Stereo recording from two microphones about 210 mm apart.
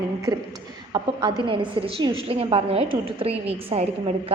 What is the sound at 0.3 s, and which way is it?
A woman's voice, 20° right (ahead or behind).